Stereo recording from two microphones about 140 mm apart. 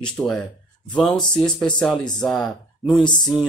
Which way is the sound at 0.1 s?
Centre (ahead or behind).